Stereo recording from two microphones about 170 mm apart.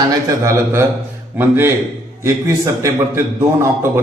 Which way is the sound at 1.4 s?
15° right (ahead or behind).